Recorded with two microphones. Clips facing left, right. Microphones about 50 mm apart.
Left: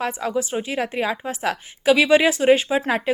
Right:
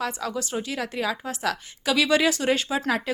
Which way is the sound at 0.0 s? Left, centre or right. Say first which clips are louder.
Left 5 dB; left.